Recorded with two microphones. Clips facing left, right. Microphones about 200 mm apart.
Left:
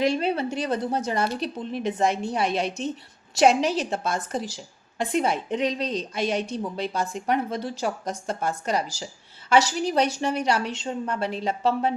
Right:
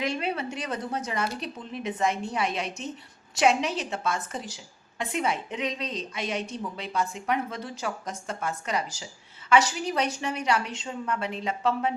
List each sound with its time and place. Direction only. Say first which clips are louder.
0.0 s a woman's voice: left 6 dB; 35° left (ahead or behind)
9.8 s a woman's voice: left 5 dB; 35° left (ahead or behind)